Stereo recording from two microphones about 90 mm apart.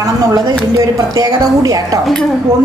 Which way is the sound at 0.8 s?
45° right (ahead or behind).